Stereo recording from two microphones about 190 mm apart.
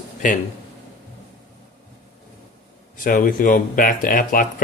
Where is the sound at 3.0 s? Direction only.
45° left (ahead or behind).